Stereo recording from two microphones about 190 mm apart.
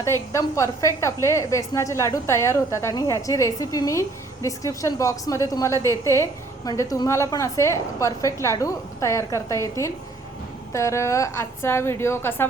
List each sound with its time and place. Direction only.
0.0 s a woman's voice: 15° left (ahead or behind)